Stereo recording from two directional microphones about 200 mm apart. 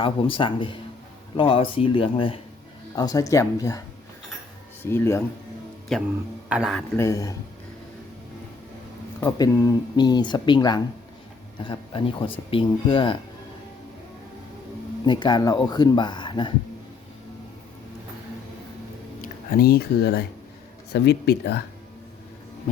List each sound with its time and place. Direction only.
0.0 s speech: 25° left (ahead or behind)
5.9 s a man's voice: centre (ahead or behind)
6.9 s speech: 15° left (ahead or behind)
9.2 s speech: 15° left (ahead or behind)
15.0 s speech: 20° left (ahead or behind)
19.2 s speech: 45° left (ahead or behind)